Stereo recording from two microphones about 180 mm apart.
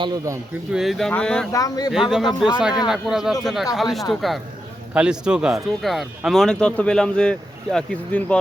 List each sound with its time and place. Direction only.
0.0 s speech: 20° right (ahead or behind)
0.7 s speech: centre (ahead or behind)
1.5 s speech: 20° left (ahead or behind)
1.9 s speech: 5° right (ahead or behind)